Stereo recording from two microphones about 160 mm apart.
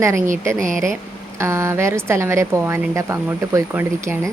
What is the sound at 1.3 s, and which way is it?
A woman's voice, 15° right (ahead or behind).